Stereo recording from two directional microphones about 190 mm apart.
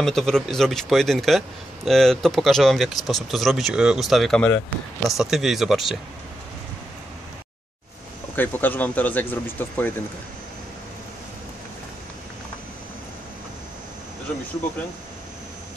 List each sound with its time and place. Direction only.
0.0 s speech: centre (ahead or behind)
8.4 s speech: 10° left (ahead or behind)